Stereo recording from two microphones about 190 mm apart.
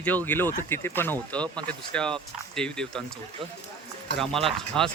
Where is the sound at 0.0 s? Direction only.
10° left (ahead or behind).